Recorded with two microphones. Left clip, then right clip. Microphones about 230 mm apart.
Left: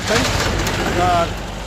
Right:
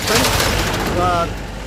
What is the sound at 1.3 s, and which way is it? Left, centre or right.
Vehicle, left.